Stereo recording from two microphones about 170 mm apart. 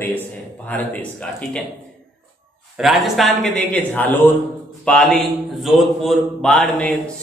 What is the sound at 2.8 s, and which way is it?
A man's voice, centre (ahead or behind).